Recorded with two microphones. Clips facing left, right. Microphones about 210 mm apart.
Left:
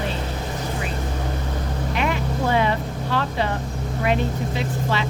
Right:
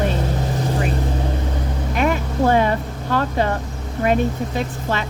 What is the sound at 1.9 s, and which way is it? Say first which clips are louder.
Speech: right 5 dB; 45° right (ahead or behind).